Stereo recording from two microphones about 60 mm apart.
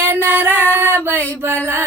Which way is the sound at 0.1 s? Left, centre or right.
Right.